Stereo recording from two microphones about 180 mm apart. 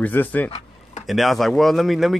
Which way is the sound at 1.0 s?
Centre (ahead or behind).